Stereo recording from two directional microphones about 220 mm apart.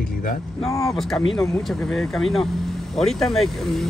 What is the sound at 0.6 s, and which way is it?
Speech, 15° left (ahead or behind).